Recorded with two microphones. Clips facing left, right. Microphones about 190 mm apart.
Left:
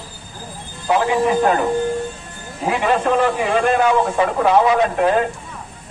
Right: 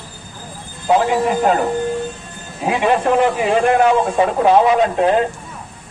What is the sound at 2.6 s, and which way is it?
A man's voice, 15° right (ahead or behind).